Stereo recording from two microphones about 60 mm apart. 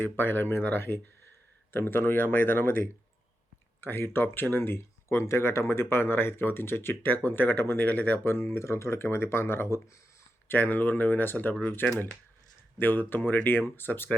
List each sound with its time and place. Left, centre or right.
0.0 s speech: left
10.5 s speech: left